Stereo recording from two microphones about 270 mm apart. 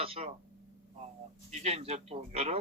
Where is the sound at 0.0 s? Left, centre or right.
Right.